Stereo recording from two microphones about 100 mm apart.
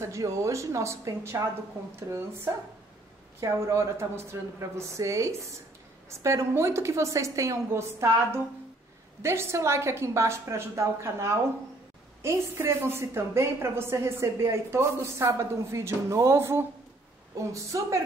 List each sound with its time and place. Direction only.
0.0 s a woman's voice: 30° right (ahead or behind)